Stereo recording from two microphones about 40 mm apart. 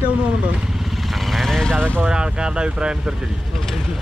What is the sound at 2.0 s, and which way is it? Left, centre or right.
Speech, right.